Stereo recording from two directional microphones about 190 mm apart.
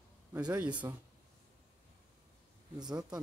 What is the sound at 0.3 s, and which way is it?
Speech, 10° right (ahead or behind).